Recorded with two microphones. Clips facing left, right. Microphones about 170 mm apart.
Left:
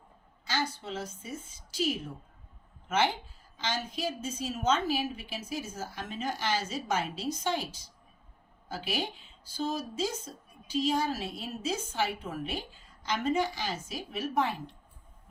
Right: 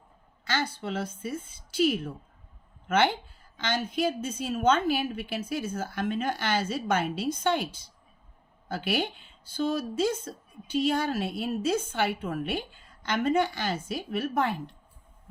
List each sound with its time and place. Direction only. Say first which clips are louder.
0.4 s a woman's voice: right 3 dB; 60° right (ahead or behind)